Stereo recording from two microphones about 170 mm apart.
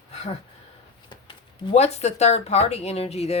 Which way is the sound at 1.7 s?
40° left (ahead or behind).